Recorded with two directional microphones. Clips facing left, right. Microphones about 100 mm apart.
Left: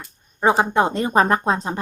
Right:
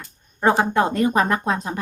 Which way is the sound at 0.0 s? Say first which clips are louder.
Even; 15° left (ahead or behind).